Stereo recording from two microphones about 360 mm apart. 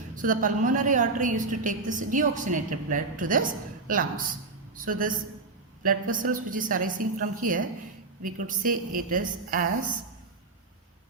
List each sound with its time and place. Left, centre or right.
0.2 s a woman's voice: right